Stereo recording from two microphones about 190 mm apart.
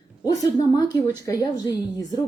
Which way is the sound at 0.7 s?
20° left (ahead or behind).